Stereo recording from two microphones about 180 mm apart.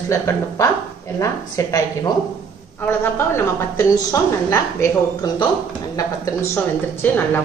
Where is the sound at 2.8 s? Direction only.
10° left (ahead or behind).